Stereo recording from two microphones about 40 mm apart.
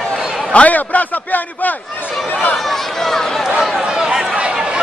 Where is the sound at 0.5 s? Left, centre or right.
Left.